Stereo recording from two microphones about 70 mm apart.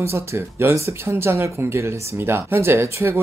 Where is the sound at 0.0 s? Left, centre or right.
Right.